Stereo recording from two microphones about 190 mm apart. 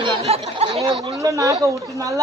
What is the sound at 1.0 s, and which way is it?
A woman's voice, 20° right (ahead or behind).